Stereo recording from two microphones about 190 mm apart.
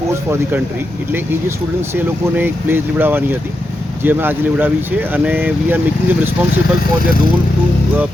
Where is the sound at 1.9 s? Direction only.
10° right (ahead or behind).